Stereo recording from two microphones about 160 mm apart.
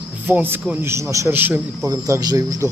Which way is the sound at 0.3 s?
15° right (ahead or behind).